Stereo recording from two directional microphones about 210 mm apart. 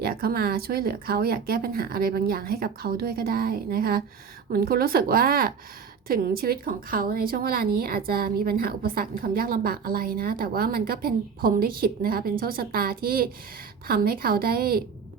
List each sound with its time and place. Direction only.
0.0 s a woman's voice: 45° right (ahead or behind)